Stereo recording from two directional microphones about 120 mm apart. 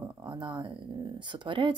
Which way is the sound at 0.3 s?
40° right (ahead or behind).